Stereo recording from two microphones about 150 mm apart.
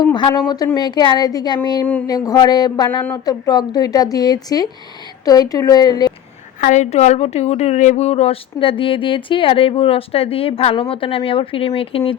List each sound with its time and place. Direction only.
0.0 s speech: 30° left (ahead or behind)
1.8 s speech: 10° left (ahead or behind)
2.0 s speech: 25° left (ahead or behind)
6.6 s a woman's voice: 55° left (ahead or behind); by 12.1 s 40° left (ahead or behind)